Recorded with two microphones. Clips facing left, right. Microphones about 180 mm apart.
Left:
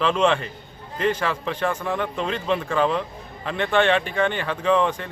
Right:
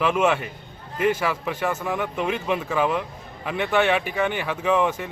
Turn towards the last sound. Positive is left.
turn(degrees=-10)  # may be behind; listen again after turning